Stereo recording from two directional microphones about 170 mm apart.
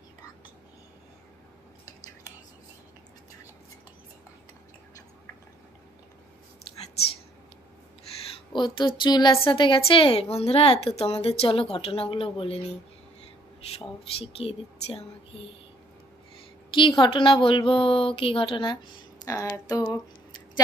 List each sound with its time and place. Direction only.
8.5 s a woman's voice: 25° left (ahead or behind)
14.1 s a woman's voice: 35° left (ahead or behind)
16.7 s a woman's voice: 30° left (ahead or behind)
19.2 s speech: 15° left (ahead or behind)